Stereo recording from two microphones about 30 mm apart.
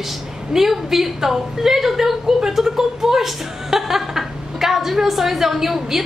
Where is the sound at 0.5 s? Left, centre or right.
Centre.